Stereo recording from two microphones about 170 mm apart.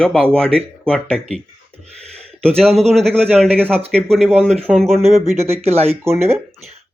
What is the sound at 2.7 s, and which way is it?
Speech, 40° right (ahead or behind).